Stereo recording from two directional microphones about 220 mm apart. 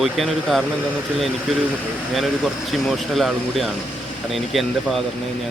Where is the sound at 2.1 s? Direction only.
Centre (ahead or behind).